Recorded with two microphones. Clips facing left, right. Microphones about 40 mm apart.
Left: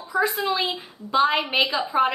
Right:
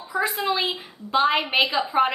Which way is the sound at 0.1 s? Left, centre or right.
Right.